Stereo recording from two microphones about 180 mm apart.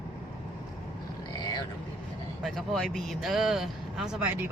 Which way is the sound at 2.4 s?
Centre (ahead or behind).